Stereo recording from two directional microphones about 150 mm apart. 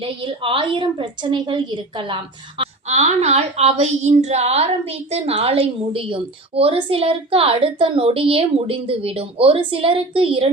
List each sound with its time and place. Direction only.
0.0 s a woman's voice: 35° right (ahead or behind)
2.8 s a woman's voice: 45° right (ahead or behind)